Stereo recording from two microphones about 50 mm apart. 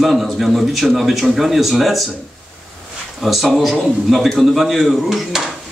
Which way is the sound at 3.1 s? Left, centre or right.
Centre.